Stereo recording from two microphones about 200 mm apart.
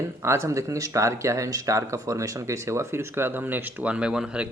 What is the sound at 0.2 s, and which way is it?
Speech, 15° right (ahead or behind).